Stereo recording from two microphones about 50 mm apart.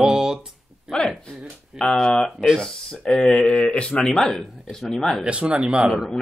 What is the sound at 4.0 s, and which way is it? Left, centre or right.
Speech, centre.